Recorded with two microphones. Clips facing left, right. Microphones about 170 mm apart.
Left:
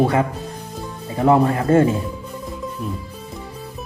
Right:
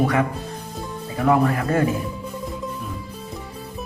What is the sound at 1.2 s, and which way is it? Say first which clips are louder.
Speech: left 3 dB; 25° left (ahead or behind).